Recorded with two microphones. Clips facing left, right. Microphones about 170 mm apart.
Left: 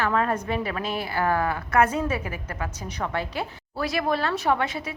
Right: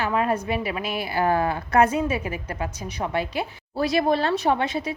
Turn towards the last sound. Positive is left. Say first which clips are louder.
# right 2 dB
turn(degrees=-20)  # may be behind; listen again after turning